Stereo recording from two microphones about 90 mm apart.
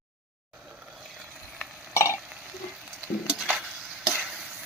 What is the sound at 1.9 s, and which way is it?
Stir, 30° left (ahead or behind).